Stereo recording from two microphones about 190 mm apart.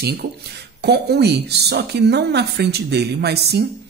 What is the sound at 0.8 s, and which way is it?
A woman's voice, 60° right (ahead or behind).